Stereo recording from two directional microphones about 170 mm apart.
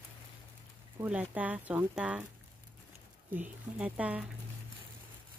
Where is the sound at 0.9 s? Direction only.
10° right (ahead or behind).